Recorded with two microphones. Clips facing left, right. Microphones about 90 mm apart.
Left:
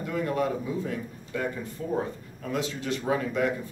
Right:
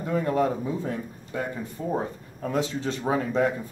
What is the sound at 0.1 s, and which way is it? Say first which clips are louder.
A man's voice: right 4 dB; 30° right (ahead or behind).